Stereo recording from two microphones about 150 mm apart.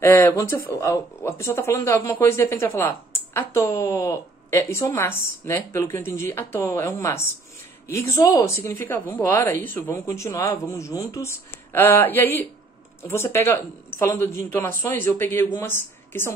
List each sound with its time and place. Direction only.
0.0 s a woman's voice: 15° left (ahead or behind)